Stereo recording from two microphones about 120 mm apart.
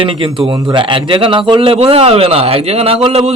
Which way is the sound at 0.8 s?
45° right (ahead or behind).